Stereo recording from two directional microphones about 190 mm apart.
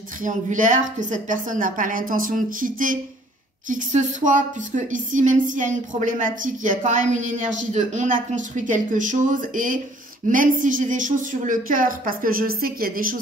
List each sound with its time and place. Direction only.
0.2 s speech: 40° right (ahead or behind)